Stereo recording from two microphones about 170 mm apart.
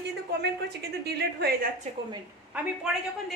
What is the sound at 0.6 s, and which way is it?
Speech, 75° right (ahead or behind).